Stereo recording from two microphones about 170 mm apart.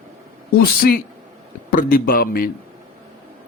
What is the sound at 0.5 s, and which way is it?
Speech, 60° left (ahead or behind).